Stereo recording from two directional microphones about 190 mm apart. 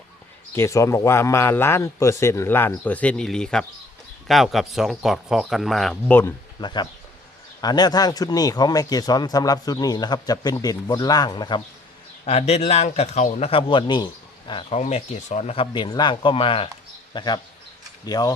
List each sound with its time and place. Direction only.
0.5 s a man's voice: 15° left (ahead or behind)
6.6 s speech: 25° left (ahead or behind)
12.2 s speech: 35° left (ahead or behind)